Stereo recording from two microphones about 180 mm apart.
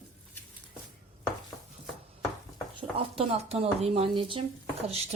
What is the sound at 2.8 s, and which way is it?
Speech, 30° right (ahead or behind).